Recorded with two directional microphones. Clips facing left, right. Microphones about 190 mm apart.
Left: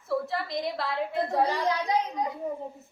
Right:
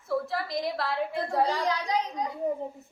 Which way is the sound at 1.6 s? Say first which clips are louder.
Left 2 dB; 20° left (ahead or behind).